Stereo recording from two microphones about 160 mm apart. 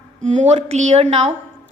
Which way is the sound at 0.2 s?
45° right (ahead or behind).